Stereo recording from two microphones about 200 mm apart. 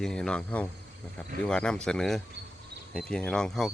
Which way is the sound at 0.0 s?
5° left (ahead or behind).